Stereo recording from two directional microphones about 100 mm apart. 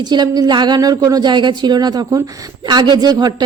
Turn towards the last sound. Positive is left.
turn(degrees=-45)  # may be behind; listen again after turning